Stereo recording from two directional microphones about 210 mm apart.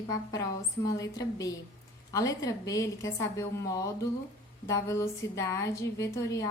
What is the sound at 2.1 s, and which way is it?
A woman's voice, 15° left (ahead or behind).